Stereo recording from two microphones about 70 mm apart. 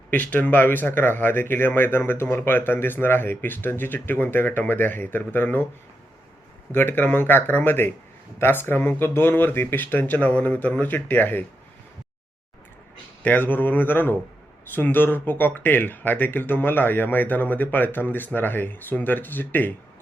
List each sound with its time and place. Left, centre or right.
0.1 s speech: left
6.7 s speech: left
13.2 s speech: left